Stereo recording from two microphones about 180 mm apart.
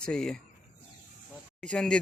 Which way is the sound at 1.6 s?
5° left (ahead or behind).